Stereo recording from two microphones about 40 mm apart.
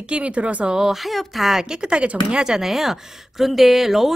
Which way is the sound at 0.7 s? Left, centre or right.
Centre.